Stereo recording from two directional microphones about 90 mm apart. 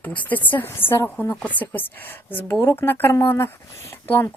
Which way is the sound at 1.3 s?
15° left (ahead or behind).